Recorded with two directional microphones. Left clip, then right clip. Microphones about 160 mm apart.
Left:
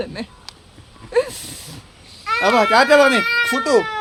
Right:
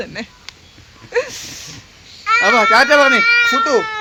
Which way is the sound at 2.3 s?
5° left (ahead or behind).